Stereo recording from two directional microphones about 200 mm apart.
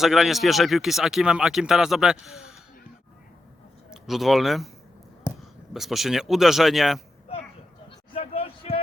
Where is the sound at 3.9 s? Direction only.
Centre (ahead or behind).